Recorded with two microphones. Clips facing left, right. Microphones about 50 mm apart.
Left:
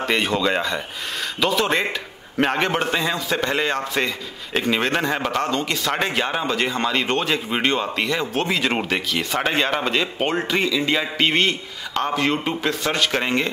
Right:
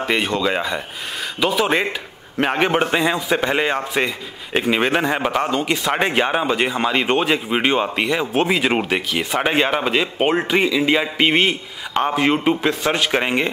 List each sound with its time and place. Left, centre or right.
0.0 s speech: centre